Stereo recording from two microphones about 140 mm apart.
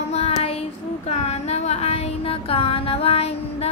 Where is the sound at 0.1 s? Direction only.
45° left (ahead or behind).